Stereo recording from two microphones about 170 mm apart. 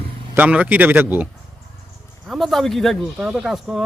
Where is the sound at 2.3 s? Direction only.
Centre (ahead or behind).